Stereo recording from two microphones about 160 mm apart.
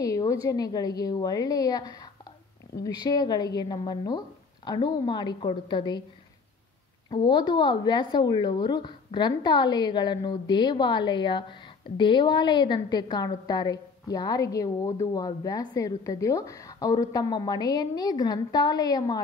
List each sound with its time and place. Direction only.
0.0 s a woman's voice: 20° left (ahead or behind)
7.1 s a woman's voice: 30° left (ahead or behind)